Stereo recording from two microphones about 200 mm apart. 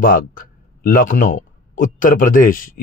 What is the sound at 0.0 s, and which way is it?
Speech, 45° left (ahead or behind).